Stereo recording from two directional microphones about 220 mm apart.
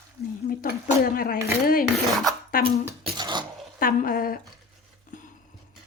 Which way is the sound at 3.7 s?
40° left (ahead or behind).